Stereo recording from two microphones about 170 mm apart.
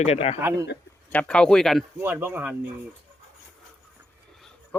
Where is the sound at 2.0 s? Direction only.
10° right (ahead or behind).